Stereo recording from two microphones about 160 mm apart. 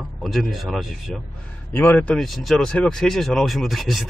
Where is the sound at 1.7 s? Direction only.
10° left (ahead or behind).